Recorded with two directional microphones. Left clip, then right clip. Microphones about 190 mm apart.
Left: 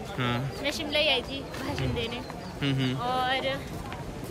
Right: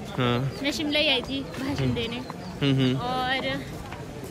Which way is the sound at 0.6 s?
15° left (ahead or behind).